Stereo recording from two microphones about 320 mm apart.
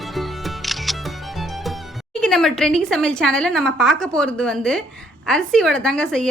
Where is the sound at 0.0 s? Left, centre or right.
Centre.